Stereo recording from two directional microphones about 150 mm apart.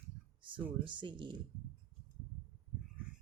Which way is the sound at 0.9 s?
30° right (ahead or behind).